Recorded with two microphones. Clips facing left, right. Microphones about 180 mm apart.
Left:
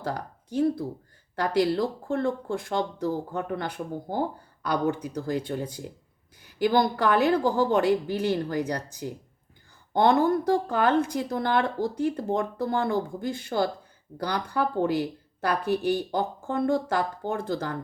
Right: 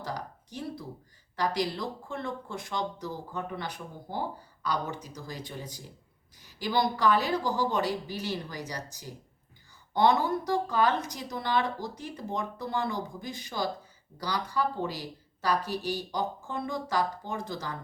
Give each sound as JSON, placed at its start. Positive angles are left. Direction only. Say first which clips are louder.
{"t": 0.0, "sound": "speech", "louder": "left 5 dB", "side_deg": 55}